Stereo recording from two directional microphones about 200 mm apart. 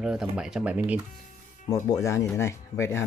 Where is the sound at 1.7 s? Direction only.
15° left (ahead or behind).